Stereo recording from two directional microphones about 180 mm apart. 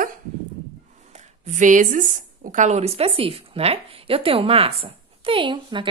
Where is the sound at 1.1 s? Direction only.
40° right (ahead or behind).